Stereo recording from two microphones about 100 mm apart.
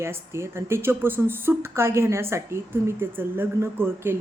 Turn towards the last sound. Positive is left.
turn(degrees=-25)  # may be behind; listen again after turning